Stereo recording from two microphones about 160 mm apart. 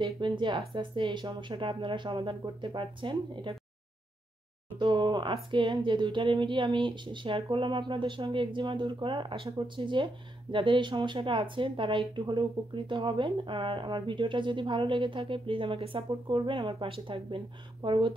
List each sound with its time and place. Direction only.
0.0 s speech: 30° right (ahead or behind)
4.7 s speech: 30° right (ahead or behind)